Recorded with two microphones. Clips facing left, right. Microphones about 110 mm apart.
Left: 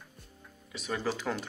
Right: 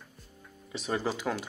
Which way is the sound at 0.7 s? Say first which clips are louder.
Right 3 dB; 25° right (ahead or behind).